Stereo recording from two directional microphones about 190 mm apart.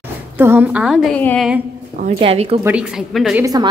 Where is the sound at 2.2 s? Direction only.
30° right (ahead or behind).